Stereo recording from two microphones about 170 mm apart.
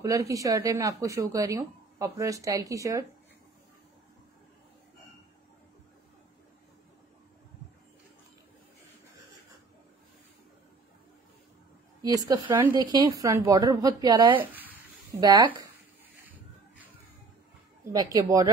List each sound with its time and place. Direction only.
0.0 s speech: 20° right (ahead or behind)
12.0 s speech: 20° right (ahead or behind)
12.7 s speech: 20° right (ahead or behind)
14.3 s speech: 10° right (ahead or behind)
15.1 s speech: 20° right (ahead or behind)
17.9 s speech: 20° right (ahead or behind)